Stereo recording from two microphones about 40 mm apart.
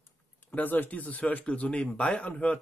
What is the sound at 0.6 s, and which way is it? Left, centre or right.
Speech, left.